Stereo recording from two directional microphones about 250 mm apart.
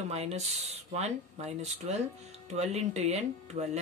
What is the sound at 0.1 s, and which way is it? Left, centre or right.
Speech, right.